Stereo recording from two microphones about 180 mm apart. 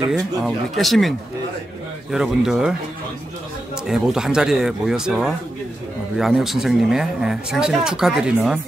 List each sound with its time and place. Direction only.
0.5 s speech: centre (ahead or behind)
3.8 s speech: 5° right (ahead or behind)